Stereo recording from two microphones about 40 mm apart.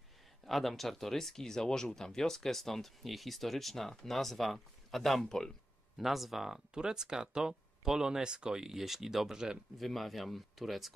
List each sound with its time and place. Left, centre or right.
0.5 s speech: centre
5.2 s speech: centre
5.9 s speech: centre